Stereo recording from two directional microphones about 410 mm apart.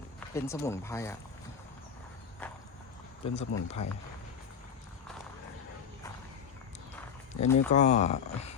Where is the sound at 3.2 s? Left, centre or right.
Centre.